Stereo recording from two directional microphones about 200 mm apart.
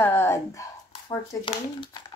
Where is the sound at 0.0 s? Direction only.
10° left (ahead or behind).